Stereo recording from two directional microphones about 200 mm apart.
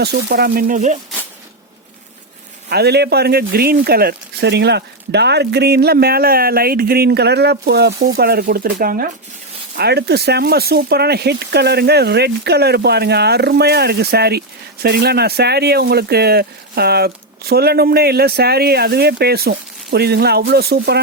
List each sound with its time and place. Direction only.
0.0 s speech: 55° right (ahead or behind)
2.6 s speech: 55° right (ahead or behind)